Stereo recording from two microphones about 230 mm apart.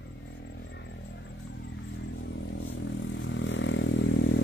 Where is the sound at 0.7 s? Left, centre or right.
Left.